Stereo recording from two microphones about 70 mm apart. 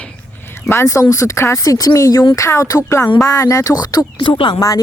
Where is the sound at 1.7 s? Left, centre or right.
Left.